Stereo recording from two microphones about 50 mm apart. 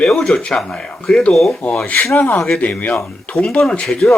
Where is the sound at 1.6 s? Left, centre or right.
Left.